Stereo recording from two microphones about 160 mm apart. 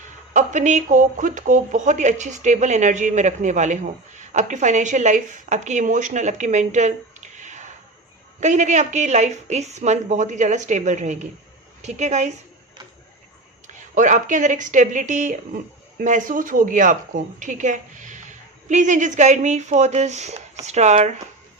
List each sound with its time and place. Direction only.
0.3 s speech: 50° right (ahead or behind)
13.9 s speech: 50° right (ahead or behind)